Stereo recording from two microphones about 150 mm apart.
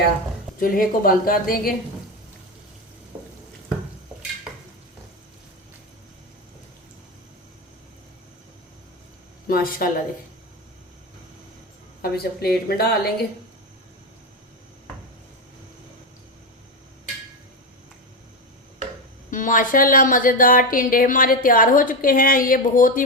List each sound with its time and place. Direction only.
0.6 s a woman's voice: 70° left (ahead or behind)
9.5 s a woman's voice: 75° left (ahead or behind)
12.0 s a woman's voice: 90° left
19.3 s a woman's voice: 60° left (ahead or behind)